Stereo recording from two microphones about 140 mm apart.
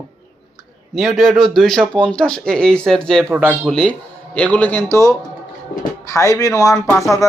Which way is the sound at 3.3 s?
10° right (ahead or behind).